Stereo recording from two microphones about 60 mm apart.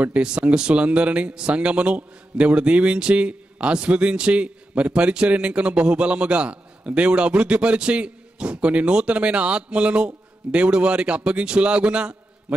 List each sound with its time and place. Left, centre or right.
0.0 s speech: centre